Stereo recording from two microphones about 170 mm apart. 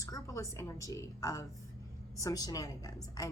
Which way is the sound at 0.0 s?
20° left (ahead or behind).